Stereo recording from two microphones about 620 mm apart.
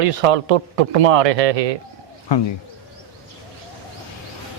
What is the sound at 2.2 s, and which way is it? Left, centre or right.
Speech, left.